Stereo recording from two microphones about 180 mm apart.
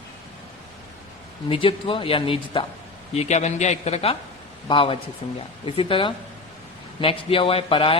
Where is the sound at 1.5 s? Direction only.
30° left (ahead or behind).